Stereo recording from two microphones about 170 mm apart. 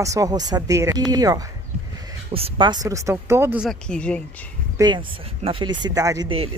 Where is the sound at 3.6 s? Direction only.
5° left (ahead or behind).